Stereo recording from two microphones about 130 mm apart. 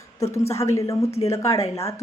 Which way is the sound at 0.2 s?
25° left (ahead or behind).